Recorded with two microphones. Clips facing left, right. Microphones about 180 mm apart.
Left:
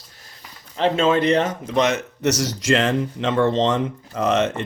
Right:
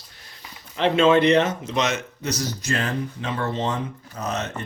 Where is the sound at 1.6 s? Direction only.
55° left (ahead or behind).